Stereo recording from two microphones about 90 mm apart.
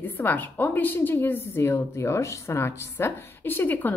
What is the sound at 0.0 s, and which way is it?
A woman's voice, 20° left (ahead or behind).